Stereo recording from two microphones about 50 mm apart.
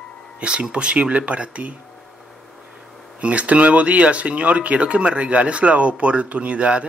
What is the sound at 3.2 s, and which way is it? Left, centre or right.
Speech, right.